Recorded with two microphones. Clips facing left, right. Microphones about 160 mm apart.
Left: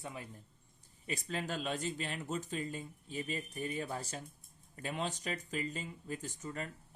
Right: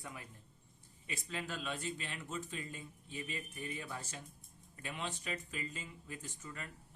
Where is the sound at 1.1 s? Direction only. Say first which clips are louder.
Left 5 dB; 40° left (ahead or behind).